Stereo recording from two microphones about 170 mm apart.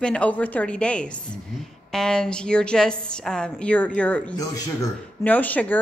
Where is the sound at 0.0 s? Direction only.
5° left (ahead or behind).